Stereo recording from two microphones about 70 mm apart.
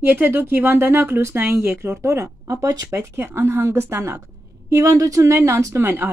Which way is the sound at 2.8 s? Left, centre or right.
Right.